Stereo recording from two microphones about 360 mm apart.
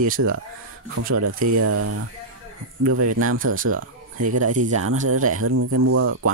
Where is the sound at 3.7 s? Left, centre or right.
Right.